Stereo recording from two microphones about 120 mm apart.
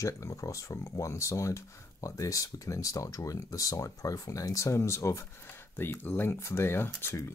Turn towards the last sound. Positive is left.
turn(degrees=20)  # may be behind; listen again after turning